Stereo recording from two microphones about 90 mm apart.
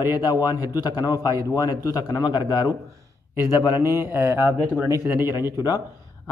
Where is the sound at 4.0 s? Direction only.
25° right (ahead or behind).